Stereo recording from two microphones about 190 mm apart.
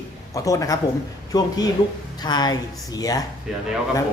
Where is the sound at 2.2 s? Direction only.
20° left (ahead or behind).